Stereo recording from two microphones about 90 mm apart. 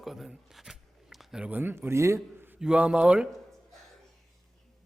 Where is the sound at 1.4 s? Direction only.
20° right (ahead or behind).